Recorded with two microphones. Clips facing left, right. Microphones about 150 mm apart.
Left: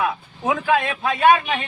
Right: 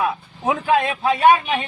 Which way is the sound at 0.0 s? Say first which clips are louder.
Right 1 dB; 30° right (ahead or behind).